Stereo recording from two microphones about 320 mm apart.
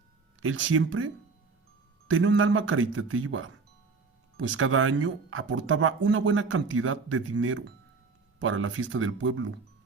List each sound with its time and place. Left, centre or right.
0.4 s speech: right